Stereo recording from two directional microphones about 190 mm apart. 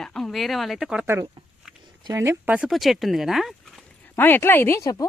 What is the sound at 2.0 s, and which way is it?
Speech, 15° right (ahead or behind).